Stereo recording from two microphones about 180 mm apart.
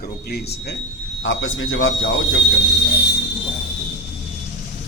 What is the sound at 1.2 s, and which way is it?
Speech, 90° left.